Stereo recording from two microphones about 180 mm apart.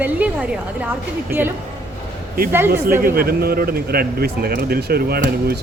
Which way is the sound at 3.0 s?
55° right (ahead or behind).